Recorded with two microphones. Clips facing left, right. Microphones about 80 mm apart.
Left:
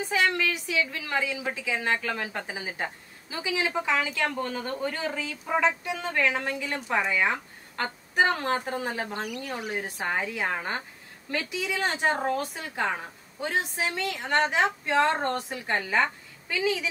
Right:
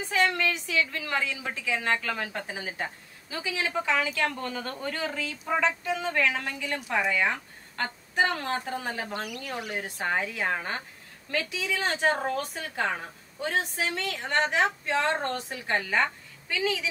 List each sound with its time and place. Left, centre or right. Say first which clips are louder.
0.1 s a woman's voice: even; centre
4.0 s speech: even; left
7.0 s a woman's voice: even; centre
8.2 s speech: left 3 dB; left
9.2 s a woman's voice: left 2 dB; centre
11.8 s a woman's voice: even; centre